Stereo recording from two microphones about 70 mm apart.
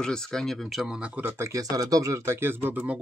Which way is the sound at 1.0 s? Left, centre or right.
Right.